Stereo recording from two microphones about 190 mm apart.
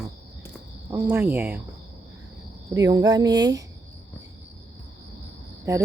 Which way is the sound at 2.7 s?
20° right (ahead or behind).